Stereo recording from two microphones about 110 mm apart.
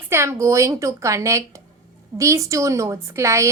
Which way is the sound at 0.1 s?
25° right (ahead or behind).